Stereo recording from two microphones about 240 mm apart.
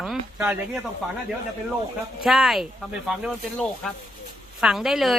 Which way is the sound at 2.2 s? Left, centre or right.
Centre.